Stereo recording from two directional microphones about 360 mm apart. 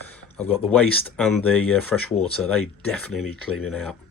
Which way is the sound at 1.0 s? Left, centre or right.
Centre.